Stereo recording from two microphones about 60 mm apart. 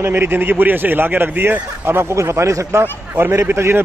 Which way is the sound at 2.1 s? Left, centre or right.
Right.